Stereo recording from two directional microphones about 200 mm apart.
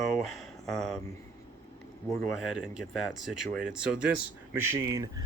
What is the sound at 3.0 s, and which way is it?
Speech, centre (ahead or behind).